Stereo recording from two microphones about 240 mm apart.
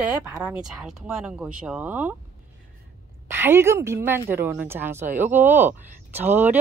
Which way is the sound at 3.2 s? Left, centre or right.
Centre.